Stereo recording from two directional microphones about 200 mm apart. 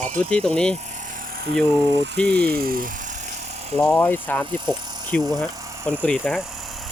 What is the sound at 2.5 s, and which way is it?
Speech, 45° right (ahead or behind).